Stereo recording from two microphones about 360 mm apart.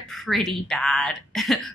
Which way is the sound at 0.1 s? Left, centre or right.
Centre.